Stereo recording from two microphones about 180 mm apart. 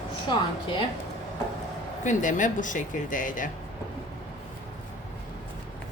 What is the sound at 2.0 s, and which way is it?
Speech, 45° left (ahead or behind).